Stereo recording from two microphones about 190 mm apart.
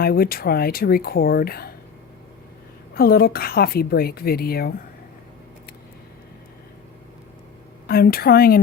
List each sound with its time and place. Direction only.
0.0 s a woman's voice: 55° left (ahead or behind)
2.9 s a woman's voice: 50° left (ahead or behind)
7.9 s a woman's voice: 50° left (ahead or behind)